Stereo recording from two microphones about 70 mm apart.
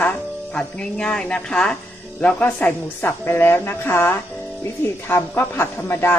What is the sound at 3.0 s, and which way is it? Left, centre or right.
A woman's voice, left.